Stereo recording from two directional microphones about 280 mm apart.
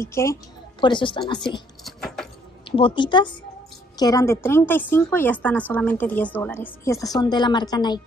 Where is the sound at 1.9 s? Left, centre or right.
Centre.